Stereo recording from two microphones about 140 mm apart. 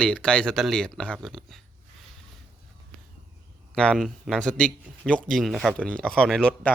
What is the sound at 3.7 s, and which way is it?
Speech, 5° left (ahead or behind).